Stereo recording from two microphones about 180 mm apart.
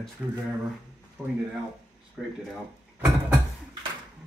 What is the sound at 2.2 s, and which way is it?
Speech, 5° right (ahead or behind).